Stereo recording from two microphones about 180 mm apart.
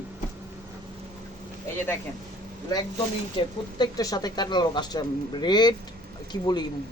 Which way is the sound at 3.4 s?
20° left (ahead or behind).